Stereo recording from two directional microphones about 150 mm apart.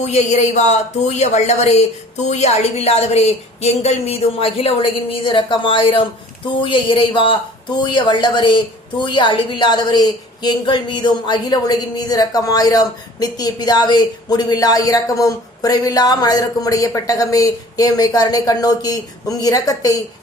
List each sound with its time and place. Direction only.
0.0 s a woman's voice: 50° left (ahead or behind); by 19.9 s 25° left (ahead or behind)